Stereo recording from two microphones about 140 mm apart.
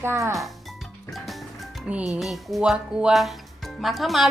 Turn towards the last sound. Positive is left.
turn(degrees=0)  # may be behind; listen again after turning